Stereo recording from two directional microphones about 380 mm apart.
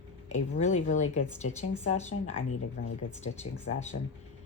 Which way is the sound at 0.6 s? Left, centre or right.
Centre.